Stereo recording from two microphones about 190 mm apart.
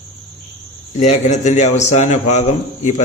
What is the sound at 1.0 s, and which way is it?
A man's voice, 40° left (ahead or behind).